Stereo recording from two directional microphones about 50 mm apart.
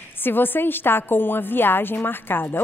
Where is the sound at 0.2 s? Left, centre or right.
Left.